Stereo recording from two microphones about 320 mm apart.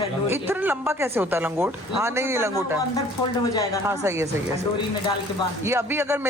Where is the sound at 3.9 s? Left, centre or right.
Centre.